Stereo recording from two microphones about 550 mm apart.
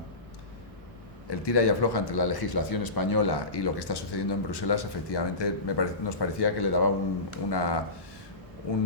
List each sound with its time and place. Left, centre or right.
1.3 s a man's voice: left